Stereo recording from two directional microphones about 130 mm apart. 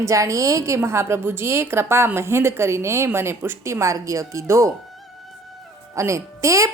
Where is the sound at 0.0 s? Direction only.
25° right (ahead or behind).